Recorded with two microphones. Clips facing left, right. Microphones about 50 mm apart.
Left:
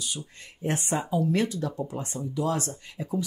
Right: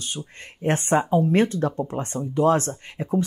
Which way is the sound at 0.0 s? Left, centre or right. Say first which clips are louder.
Right 3 dB; right.